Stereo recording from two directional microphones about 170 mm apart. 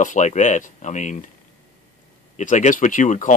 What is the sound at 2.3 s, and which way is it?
Speech, 45° left (ahead or behind).